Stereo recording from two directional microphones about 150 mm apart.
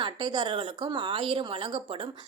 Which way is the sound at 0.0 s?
30° right (ahead or behind).